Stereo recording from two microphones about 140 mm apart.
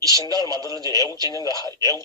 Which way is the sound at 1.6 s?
25° left (ahead or behind).